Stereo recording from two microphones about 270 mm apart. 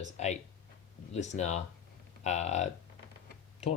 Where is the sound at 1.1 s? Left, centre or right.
Left.